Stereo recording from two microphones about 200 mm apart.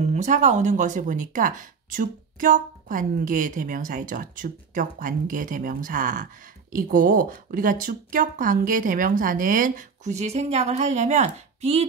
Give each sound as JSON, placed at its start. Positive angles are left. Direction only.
{"t": 0.0, "sound": "speech", "side_deg": -35}